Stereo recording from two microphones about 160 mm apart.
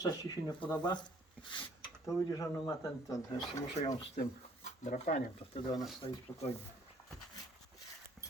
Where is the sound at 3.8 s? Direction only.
45° left (ahead or behind).